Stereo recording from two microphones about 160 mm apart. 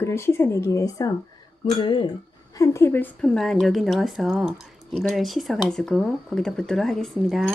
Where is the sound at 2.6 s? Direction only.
15° left (ahead or behind); by 7.4 s centre (ahead or behind).